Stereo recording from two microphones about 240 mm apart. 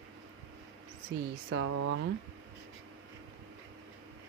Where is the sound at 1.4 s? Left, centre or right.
Right.